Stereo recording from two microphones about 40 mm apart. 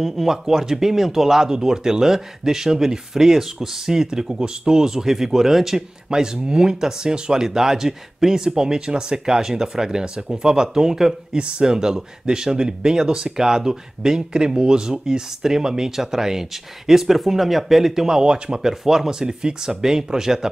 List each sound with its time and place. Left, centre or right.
0.0 s speech: centre
6.0 s speech: centre
11.3 s speech: right
18.7 s speech: centre